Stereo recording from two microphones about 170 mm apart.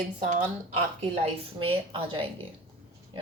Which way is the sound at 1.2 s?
30° right (ahead or behind).